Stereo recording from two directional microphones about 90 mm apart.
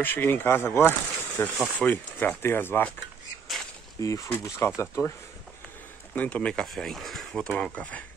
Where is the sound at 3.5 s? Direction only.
Centre (ahead or behind).